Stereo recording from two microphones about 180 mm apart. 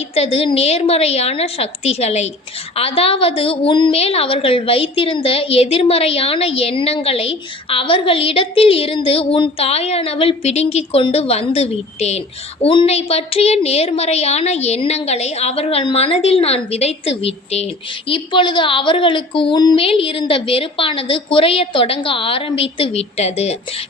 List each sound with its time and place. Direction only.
0.1 s a woman's voice: 35° left (ahead or behind)